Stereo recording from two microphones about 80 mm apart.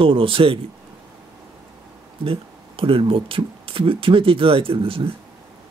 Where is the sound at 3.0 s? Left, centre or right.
Right.